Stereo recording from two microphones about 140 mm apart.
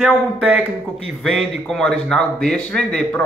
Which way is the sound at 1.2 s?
Centre (ahead or behind).